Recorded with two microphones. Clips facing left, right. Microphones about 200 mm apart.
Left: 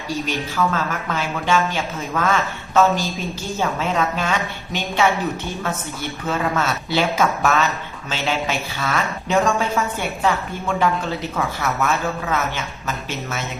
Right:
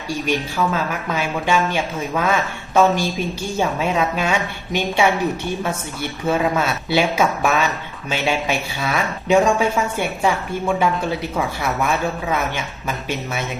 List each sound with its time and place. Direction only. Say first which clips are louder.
0.3 s a woman's voice: right 3 dB; 10° right (ahead or behind)
11.3 s a woman's voice: left 1 dB; 15° right (ahead or behind)